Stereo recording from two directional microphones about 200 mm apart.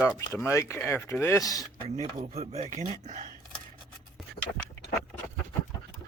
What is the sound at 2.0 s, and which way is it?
Speech, 35° right (ahead or behind).